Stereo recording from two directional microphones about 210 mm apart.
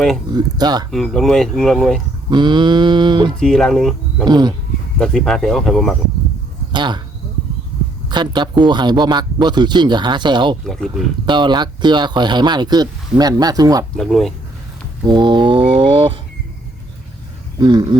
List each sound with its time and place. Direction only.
0.3 s speech: 20° right (ahead or behind)
0.9 s speech: centre (ahead or behind)
2.3 s speech: 20° right (ahead or behind)
3.4 s speech: centre (ahead or behind)
4.3 s speech: 20° right (ahead or behind)
4.9 s speech: centre (ahead or behind)
6.7 s speech: 20° right (ahead or behind)
8.1 s speech: 20° right (ahead or behind)
10.7 s speech: centre (ahead or behind)
11.3 s speech: 20° right (ahead or behind)
13.9 s speech: centre (ahead or behind)
15.0 s mantra: 20° right (ahead or behind)
17.6 s speech: 20° right (ahead or behind)